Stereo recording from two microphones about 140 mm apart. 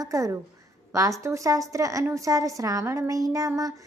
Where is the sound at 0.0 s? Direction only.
25° right (ahead or behind).